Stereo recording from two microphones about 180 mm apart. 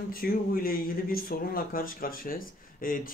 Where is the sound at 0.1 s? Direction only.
55° left (ahead or behind).